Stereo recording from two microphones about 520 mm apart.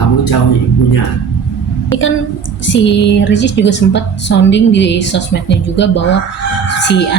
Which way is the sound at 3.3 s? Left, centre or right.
Centre.